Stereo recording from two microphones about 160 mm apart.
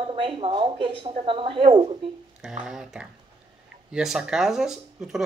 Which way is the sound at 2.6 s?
5° right (ahead or behind).